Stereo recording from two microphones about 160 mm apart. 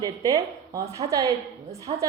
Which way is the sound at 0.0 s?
20° right (ahead or behind).